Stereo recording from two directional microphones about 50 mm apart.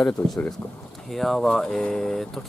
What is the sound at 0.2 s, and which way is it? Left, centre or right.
Speech, left.